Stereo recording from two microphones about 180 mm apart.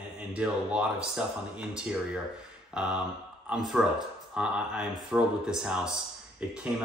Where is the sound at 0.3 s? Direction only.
5° right (ahead or behind).